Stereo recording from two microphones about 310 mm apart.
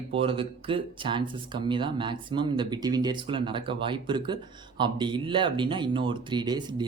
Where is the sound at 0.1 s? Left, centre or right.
Centre.